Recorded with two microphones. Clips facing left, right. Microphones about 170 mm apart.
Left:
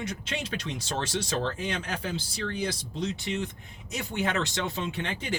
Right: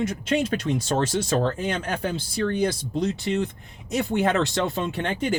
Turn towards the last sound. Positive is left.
turn(degrees=-50)  # may be behind; listen again after turning